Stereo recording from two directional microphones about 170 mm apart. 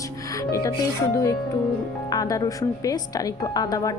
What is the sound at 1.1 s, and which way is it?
A woman's voice, 20° left (ahead or behind).